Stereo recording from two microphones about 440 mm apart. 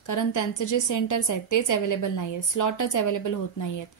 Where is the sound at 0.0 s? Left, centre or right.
Left.